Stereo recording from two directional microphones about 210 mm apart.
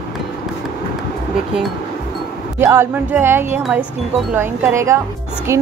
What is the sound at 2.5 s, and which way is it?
Speech, 10° right (ahead or behind).